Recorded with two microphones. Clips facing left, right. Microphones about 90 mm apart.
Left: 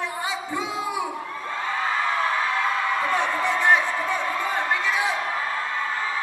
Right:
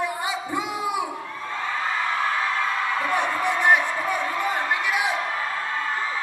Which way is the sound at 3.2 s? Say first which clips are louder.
Even; 15° right (ahead or behind).